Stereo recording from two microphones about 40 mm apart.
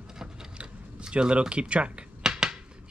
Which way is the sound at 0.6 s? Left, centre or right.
Right.